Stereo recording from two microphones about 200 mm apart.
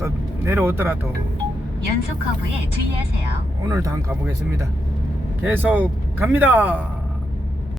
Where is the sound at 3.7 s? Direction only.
15° right (ahead or behind).